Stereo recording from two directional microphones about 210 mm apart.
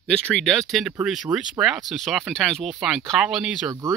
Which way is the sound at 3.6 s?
15° right (ahead or behind).